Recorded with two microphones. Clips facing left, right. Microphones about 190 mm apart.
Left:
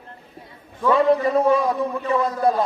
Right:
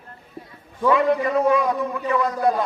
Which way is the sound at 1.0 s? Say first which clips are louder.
Left 2 dB; 30° left (ahead or behind).